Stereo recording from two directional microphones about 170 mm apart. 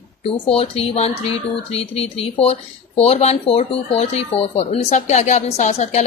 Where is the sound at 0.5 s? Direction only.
35° left (ahead or behind).